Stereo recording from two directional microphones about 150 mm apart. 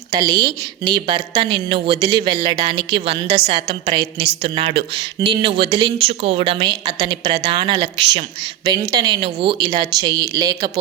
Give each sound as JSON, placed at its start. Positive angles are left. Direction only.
{"t": 0.1, "sound": "a woman's voice", "side_deg": -25}